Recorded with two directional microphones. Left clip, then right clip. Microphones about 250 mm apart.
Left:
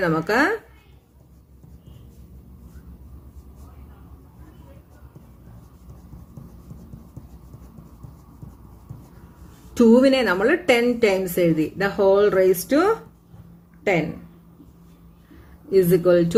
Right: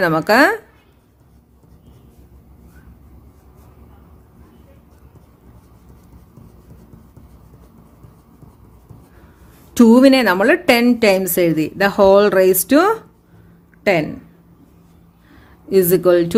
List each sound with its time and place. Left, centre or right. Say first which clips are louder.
0.0 s a woman's voice: right 7 dB; right
9.7 s a woman's voice: right 5 dB; right
15.7 s a woman's voice: right 4 dB; right